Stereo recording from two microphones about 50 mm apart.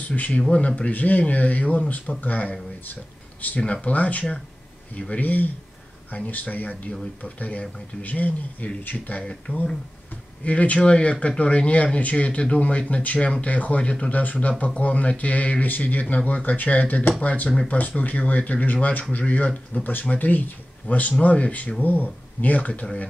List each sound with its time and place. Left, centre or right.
0.1 s speech: left